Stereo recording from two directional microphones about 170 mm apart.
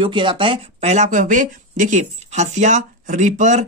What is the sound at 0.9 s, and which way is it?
Speech, 45° right (ahead or behind).